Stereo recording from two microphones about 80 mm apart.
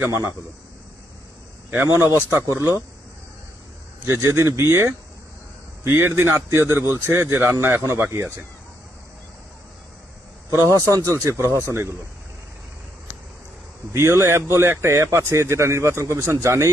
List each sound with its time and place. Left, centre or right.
0.1 s a man's voice: right
1.9 s a man's voice: right
4.0 s a man's voice: right
10.9 s a man's voice: right
13.9 s a man's voice: right